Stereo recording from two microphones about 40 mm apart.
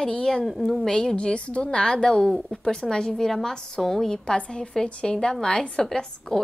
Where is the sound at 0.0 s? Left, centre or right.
Centre.